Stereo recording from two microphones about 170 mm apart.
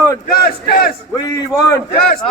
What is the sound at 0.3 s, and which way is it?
Crowd, 65° left (ahead or behind).